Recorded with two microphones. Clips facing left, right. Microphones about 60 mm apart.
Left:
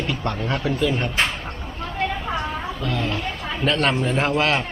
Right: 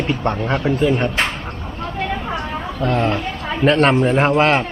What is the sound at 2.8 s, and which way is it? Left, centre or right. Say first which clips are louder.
A man's voice: right 9 dB; right.